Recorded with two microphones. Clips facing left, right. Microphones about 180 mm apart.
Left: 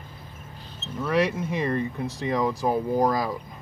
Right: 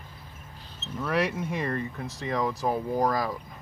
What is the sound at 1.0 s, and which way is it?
Speech, 5° right (ahead or behind).